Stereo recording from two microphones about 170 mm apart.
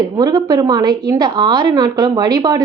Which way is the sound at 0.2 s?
25° right (ahead or behind).